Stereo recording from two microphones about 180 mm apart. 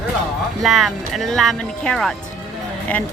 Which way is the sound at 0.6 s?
Centre (ahead or behind).